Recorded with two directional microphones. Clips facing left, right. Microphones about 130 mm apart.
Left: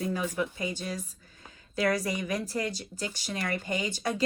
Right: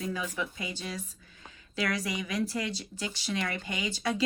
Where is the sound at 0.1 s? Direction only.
45° left (ahead or behind).